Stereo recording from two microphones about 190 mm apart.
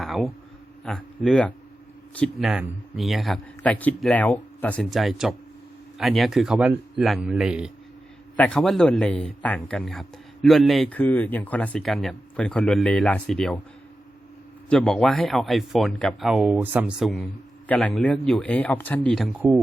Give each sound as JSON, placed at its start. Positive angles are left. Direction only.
{"t": 0.0, "sound": "a sound", "side_deg": 0}
{"t": 0.9, "sound": "speech", "side_deg": 5}
{"t": 14.7, "sound": "a man's voice", "side_deg": 5}